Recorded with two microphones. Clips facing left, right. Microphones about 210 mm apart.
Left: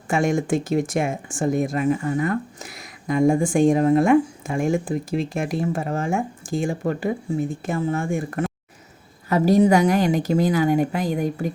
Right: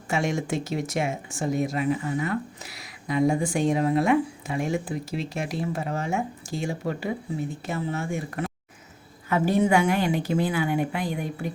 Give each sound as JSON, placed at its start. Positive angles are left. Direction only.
{"t": 0.1, "sound": "a woman's voice", "side_deg": 50}